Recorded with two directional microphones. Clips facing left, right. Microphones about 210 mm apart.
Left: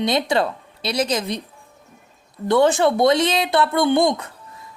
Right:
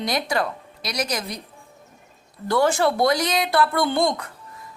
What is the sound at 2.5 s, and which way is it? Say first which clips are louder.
Speech: left 4 dB; 20° left (ahead or behind).